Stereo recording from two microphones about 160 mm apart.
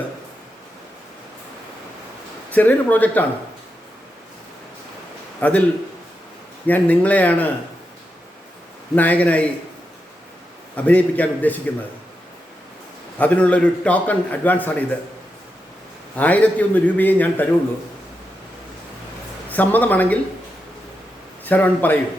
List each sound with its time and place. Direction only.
2.5 s a man's voice: 10° left (ahead or behind)
5.4 s a man's voice: 10° left (ahead or behind)
6.7 s a man's voice: 10° left (ahead or behind)
9.0 s a man's voice: 10° left (ahead or behind)
10.8 s a man's voice: 10° left (ahead or behind)
13.1 s a man's voice: 10° left (ahead or behind)
16.1 s a man's voice: 10° left (ahead or behind)
19.5 s a man's voice: 10° left (ahead or behind)
21.4 s a man's voice: 10° left (ahead or behind)